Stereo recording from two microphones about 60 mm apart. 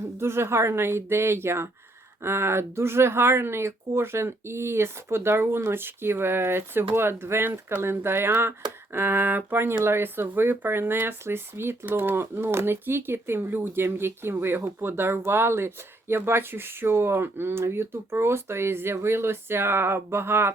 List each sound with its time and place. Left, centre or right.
0.2 s speech: right